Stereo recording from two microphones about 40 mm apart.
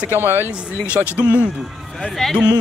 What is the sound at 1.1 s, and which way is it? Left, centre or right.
Speech, right.